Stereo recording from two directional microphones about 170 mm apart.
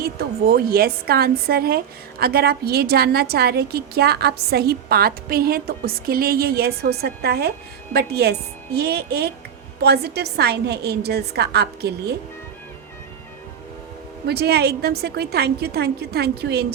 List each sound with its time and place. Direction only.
0.0 s a woman's voice: 65° right (ahead or behind)
14.3 s a woman's voice: 70° right (ahead or behind)